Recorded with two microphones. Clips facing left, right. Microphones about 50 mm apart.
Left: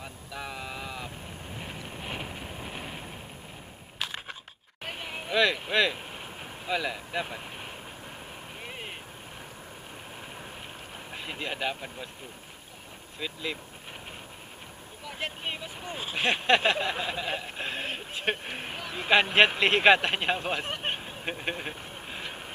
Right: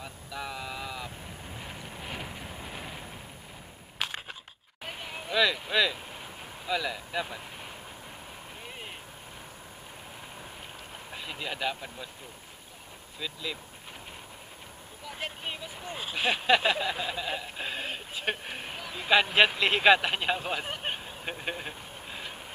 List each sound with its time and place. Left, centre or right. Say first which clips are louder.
0.0 s vehicle: right 1 dB; centre
1.6 s vehicle: left 3 dB; left
4.8 s a sound: left 2 dB; left
5.3 s speech: left 1 dB; centre
5.9 s vehicle: left 2 dB; left
6.7 s speech: left 1 dB; centre
8.6 s vehicle: left 3 dB; left
11.1 s speech: left 2 dB; centre
13.2 s speech: left 2 dB; centre
15.1 s speech: left 2 dB; left
20.8 s vehicle: left 2 dB; centre